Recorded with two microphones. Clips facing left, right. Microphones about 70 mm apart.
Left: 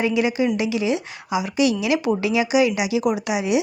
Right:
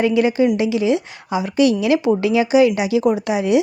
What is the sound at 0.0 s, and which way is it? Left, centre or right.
Speech, right.